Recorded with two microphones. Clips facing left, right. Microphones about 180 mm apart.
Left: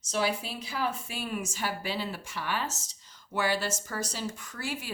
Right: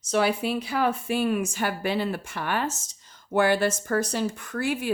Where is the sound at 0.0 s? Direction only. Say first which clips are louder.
Right 6 dB; 60° right (ahead or behind).